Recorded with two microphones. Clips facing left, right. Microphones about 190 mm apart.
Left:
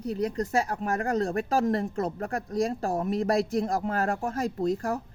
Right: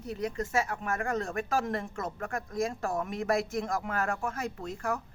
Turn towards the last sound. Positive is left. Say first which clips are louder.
# left 7 dB
turn(degrees=35)  # may be behind; listen again after turning